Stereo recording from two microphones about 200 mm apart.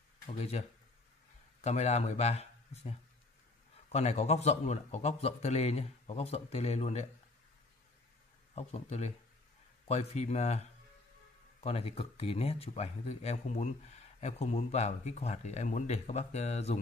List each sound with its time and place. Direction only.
0.3 s speech: 30° left (ahead or behind)
8.5 s speech: 30° left (ahead or behind)